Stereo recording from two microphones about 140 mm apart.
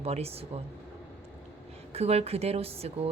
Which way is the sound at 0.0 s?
45° right (ahead or behind).